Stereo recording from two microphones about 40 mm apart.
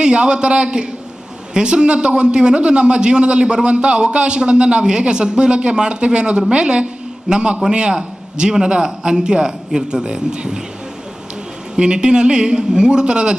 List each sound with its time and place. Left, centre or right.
0.0 s a man's voice: right
11.8 s a man's voice: right